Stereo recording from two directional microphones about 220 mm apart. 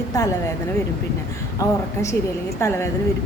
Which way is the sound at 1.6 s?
15° left (ahead or behind).